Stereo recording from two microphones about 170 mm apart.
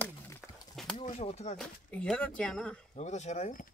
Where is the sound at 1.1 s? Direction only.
40° left (ahead or behind).